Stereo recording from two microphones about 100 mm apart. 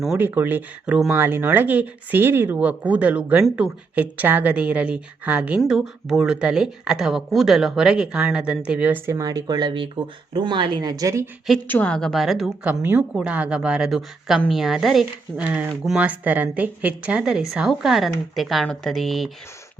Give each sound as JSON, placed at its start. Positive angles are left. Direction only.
{"t": 0.2, "sound": "speech", "side_deg": -20}
{"t": 9.0, "sound": "speech", "side_deg": -35}
{"t": 11.7, "sound": "a woman's voice", "side_deg": 15}
{"t": 11.9, "sound": "speech", "side_deg": 0}
{"t": 12.6, "sound": "speech", "side_deg": -15}
{"t": 15.4, "sound": "speech", "side_deg": -20}